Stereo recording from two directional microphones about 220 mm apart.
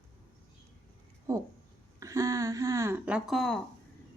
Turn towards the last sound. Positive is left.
turn(degrees=0)  # may be behind; listen again after turning